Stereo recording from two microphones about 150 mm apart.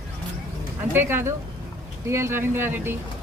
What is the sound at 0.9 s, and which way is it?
Speech, 15° right (ahead or behind).